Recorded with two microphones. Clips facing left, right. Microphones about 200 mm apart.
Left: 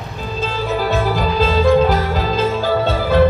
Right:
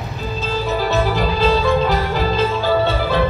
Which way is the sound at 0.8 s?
50° left (ahead or behind).